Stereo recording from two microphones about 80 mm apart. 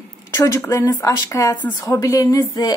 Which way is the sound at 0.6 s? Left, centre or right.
Left.